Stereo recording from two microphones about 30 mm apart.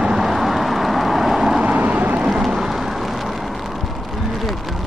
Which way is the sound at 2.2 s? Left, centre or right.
Right.